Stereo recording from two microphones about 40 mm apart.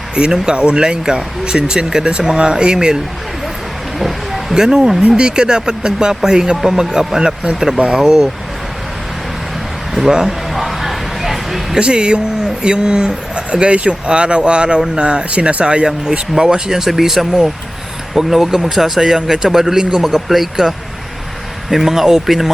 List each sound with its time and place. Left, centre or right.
0.2 s speech: right
3.9 s a sound: centre
4.5 s speech: centre
10.1 s speech: centre
10.5 s a sound: centre
11.8 s speech: right